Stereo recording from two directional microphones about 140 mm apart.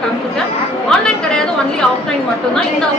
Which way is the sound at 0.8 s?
5° left (ahead or behind).